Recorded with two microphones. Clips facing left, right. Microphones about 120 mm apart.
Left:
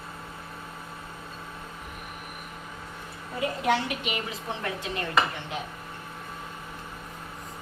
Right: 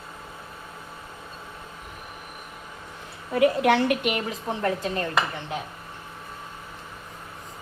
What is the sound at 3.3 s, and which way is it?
Speech, 75° right (ahead or behind).